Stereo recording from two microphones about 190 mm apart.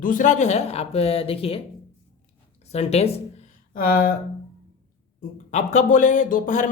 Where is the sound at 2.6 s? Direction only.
35° left (ahead or behind).